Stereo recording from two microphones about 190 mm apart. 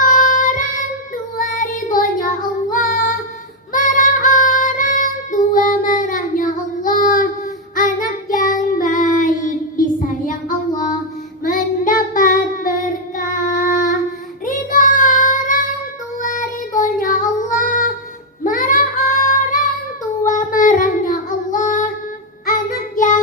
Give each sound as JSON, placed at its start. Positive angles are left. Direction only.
{"t": 0.0, "sound": "child singing", "side_deg": 45}
{"t": 3.7, "sound": "female singing", "side_deg": 45}
{"t": 7.8, "sound": "child singing", "side_deg": 45}
{"t": 11.4, "sound": "child singing", "side_deg": 45}